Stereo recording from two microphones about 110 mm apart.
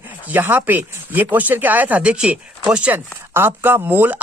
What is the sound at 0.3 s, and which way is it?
Speech, 15° right (ahead or behind).